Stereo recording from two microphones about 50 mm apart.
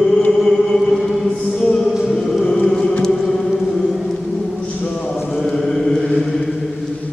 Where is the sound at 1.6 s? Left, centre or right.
Centre.